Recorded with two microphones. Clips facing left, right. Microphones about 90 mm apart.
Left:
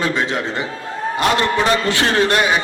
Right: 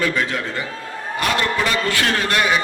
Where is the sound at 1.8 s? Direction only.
25° left (ahead or behind).